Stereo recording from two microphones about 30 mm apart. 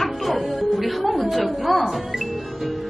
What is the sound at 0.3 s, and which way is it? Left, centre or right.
Music, centre.